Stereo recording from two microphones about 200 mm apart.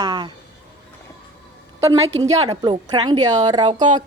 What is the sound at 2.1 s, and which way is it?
A woman's voice, 30° right (ahead or behind).